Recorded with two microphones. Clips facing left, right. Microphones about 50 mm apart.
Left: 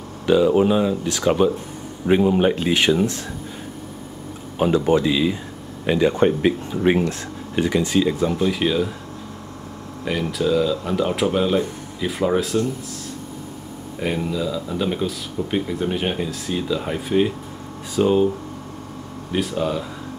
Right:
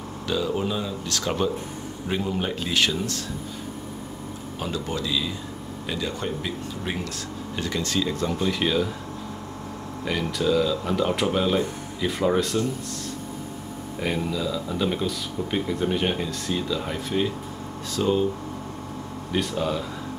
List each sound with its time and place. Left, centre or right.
0.3 s speech: left
1.0 s speech: centre
2.0 s speech: left
4.6 s speech: left; by 8.9 s centre
10.0 s speech: centre
13.9 s speech: centre
19.3 s speech: centre